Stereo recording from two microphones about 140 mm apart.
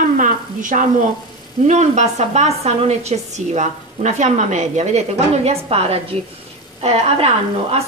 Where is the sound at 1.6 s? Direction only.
55° right (ahead or behind).